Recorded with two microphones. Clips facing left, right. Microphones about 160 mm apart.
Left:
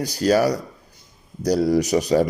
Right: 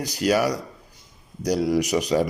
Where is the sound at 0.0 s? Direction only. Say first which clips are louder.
Left 3 dB; 30° left (ahead or behind).